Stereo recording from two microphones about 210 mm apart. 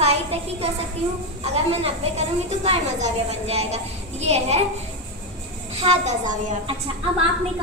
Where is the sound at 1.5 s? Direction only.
30° right (ahead or behind).